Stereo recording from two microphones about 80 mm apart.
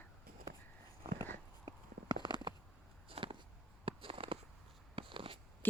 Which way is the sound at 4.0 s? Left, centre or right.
Right.